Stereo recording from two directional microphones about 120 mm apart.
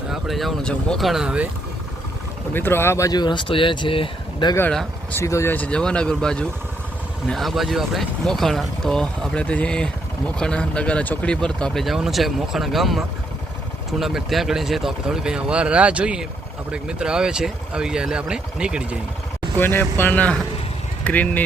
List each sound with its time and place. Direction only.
0.1 s speech: centre (ahead or behind)
2.5 s speech: 20° left (ahead or behind)
3.1 s speech: 35° left (ahead or behind)
5.1 s speech: 25° left (ahead or behind); by 18.9 s 5° right (ahead or behind)
19.5 s speech: 15° left (ahead or behind)